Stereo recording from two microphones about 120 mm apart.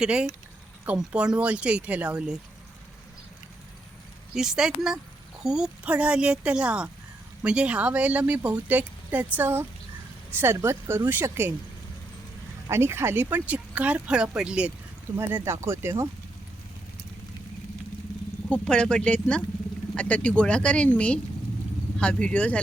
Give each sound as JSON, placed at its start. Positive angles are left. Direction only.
{"t": 0.0, "sound": "speech", "side_deg": -10}
{"t": 4.4, "sound": "a woman's voice", "side_deg": -5}
{"t": 12.6, "sound": "speech", "side_deg": -20}
{"t": 15.4, "sound": "a woman's voice", "side_deg": -20}
{"t": 18.5, "sound": "speech", "side_deg": 10}